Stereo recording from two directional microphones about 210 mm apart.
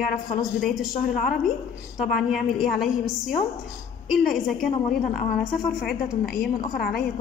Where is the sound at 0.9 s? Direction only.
40° left (ahead or behind).